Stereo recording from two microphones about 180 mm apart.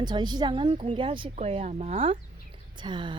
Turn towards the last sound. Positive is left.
turn(degrees=-25)  # may be behind; listen again after turning